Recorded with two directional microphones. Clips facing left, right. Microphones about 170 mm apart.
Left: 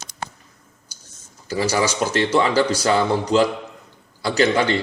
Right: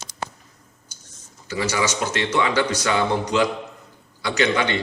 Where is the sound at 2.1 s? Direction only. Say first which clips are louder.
Left 4 dB; 35° left (ahead or behind).